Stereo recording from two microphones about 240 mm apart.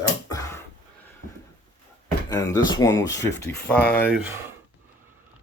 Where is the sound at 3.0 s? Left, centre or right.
Left.